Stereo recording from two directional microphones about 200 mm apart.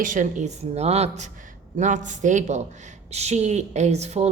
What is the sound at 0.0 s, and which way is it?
Speech, 40° right (ahead or behind).